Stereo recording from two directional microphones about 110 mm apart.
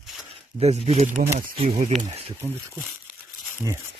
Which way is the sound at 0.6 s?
75° right (ahead or behind).